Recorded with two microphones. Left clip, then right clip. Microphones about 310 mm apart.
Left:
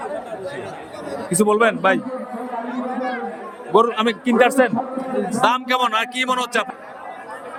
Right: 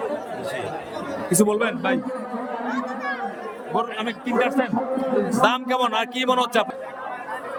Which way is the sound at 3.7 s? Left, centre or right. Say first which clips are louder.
Left 10 dB; centre.